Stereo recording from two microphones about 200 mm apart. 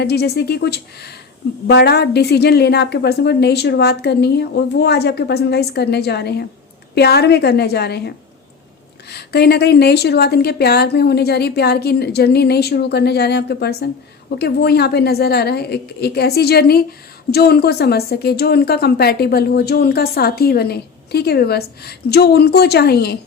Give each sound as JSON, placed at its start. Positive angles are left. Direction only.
{"t": 0.0, "sound": "a woman's voice", "side_deg": 55}